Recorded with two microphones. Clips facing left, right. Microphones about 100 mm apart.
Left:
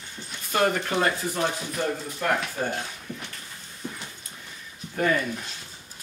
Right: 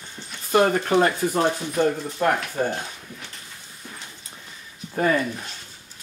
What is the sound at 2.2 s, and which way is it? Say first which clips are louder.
Speech: right 5 dB; 40° right (ahead or behind).